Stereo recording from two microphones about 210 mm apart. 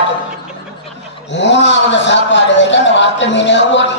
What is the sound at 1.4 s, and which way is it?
Speech, 60° left (ahead or behind).